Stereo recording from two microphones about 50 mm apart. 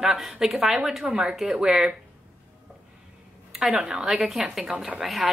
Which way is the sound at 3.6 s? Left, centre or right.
Centre.